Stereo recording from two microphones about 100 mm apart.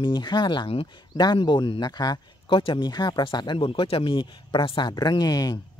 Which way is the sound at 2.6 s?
60° left (ahead or behind).